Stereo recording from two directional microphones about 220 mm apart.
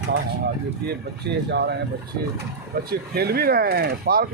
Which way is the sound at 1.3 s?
50° right (ahead or behind).